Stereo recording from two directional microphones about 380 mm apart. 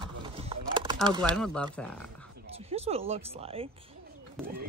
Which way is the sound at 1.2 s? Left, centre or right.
Centre.